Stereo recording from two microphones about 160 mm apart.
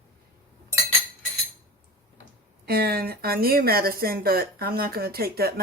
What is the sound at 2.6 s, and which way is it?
Speech, 80° right.